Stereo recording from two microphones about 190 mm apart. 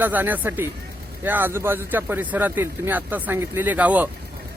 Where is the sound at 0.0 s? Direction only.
10° right (ahead or behind).